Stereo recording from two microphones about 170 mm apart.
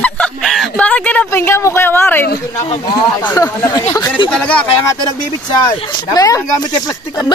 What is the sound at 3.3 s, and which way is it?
Speech, 15° left (ahead or behind).